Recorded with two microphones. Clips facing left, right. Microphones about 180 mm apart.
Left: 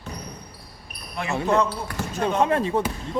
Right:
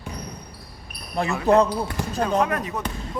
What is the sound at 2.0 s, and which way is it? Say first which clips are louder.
Speech: right 1 dB; 15° right (ahead or behind).